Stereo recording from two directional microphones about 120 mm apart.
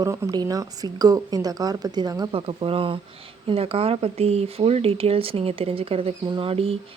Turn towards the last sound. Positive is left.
turn(degrees=-50)  # may be behind; listen again after turning